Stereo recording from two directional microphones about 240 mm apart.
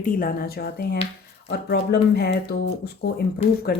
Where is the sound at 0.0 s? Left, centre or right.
Left.